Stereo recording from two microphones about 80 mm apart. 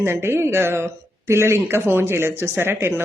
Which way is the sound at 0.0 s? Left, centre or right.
Right.